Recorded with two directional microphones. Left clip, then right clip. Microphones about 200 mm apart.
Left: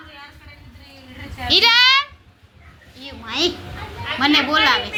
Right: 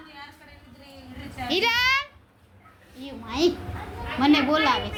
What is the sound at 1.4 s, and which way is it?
Speech, 10° right (ahead or behind).